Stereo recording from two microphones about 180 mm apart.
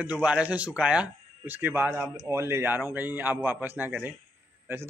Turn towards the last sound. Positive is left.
turn(degrees=-15)  # may be behind; listen again after turning